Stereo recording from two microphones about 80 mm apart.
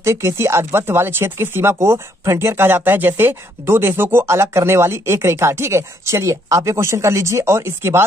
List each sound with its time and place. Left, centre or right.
0.0 s speech: right